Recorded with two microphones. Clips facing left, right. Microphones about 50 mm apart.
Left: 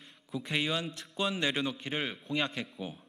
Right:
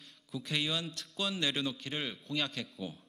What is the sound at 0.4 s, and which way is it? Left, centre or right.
A man's voice, left.